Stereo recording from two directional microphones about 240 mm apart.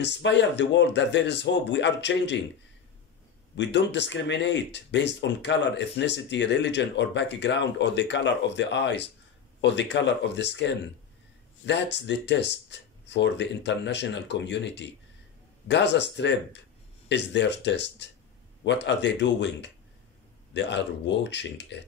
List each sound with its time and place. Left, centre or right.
0.0 s speech: left
3.5 s speech: left